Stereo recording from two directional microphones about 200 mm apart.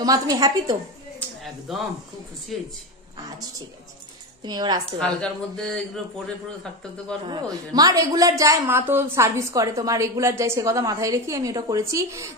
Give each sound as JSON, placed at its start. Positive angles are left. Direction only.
{"t": 0.0, "sound": "a woman's voice", "side_deg": -20}
{"t": 1.7, "sound": "a man's voice", "side_deg": 0}
{"t": 4.5, "sound": "a woman's voice", "side_deg": -20}
{"t": 5.0, "sound": "a man's voice", "side_deg": 5}
{"t": 7.2, "sound": "a woman's voice", "side_deg": -20}